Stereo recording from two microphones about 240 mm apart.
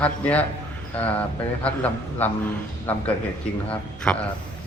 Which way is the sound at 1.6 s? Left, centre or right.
Centre.